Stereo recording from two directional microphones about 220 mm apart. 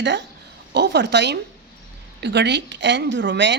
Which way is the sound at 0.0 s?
55° right (ahead or behind).